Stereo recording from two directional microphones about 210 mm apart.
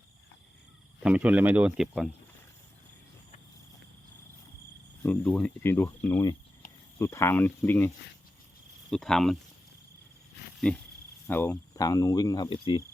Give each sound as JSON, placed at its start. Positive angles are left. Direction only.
{"t": 1.0, "sound": "speech", "side_deg": -5}
{"t": 5.0, "sound": "speech", "side_deg": 5}
{"t": 10.6, "sound": "speech", "side_deg": 5}